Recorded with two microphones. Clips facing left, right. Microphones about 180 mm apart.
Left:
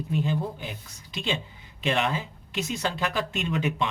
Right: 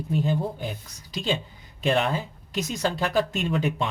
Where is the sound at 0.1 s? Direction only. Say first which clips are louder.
Right 3 dB; 40° right (ahead or behind).